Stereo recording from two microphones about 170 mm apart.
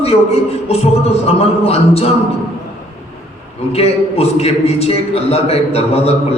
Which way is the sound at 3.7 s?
35° left (ahead or behind).